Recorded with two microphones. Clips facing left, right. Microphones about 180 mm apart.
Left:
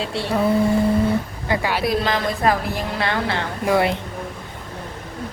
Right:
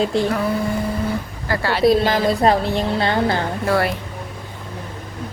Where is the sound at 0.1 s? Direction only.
30° left (ahead or behind).